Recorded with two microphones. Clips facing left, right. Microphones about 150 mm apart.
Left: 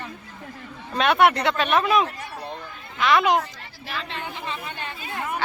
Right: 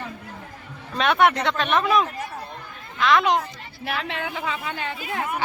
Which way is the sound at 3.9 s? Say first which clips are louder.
Right 4 dB; 90° right.